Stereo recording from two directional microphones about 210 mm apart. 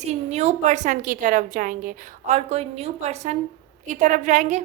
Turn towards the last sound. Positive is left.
turn(degrees=-35)  # may be behind; listen again after turning